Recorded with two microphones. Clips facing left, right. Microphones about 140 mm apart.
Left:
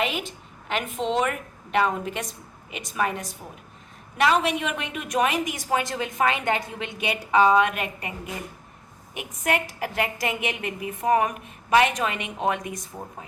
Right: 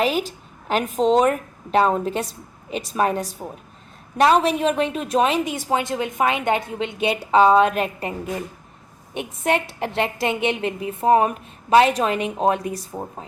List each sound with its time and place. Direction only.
0.0 s a woman's voice: 35° right (ahead or behind)
9.1 s a woman's voice: 30° right (ahead or behind)